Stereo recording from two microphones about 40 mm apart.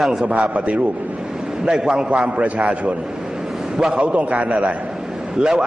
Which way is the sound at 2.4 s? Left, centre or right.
Right.